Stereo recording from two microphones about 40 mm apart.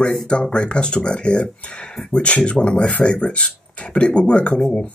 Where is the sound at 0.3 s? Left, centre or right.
Left.